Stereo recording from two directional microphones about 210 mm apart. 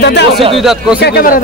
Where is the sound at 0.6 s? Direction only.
Centre (ahead or behind).